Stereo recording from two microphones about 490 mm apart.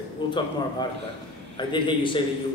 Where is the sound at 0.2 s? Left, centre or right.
Centre.